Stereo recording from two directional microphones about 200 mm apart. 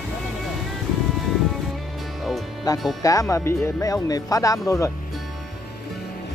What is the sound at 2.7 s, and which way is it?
Speech, 20° left (ahead or behind).